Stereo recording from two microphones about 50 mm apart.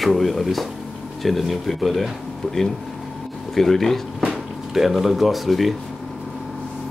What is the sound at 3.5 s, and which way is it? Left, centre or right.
Speech, centre.